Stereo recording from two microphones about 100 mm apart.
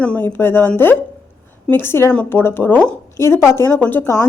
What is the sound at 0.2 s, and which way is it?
Speech, 20° left (ahead or behind).